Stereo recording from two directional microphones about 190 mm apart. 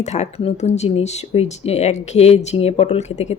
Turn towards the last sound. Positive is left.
turn(degrees=35)  # may be behind; listen again after turning